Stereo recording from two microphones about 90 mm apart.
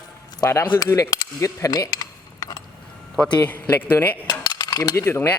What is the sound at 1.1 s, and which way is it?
Speech, 40° left (ahead or behind).